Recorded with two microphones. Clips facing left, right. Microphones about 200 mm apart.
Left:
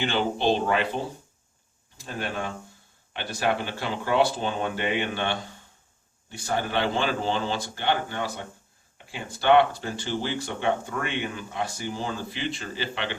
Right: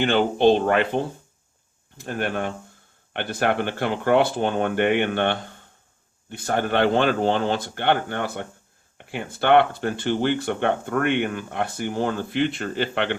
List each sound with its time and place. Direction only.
0.0 s speech: 55° right (ahead or behind)